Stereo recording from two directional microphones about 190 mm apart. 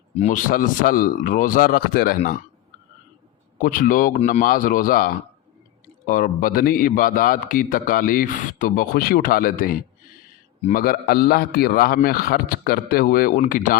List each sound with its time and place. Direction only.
0.2 s a man's voice: 40° left (ahead or behind)
3.6 s a man's voice: 45° left (ahead or behind)